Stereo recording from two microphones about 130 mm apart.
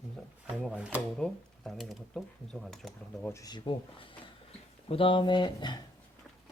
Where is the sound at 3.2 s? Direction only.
25° left (ahead or behind).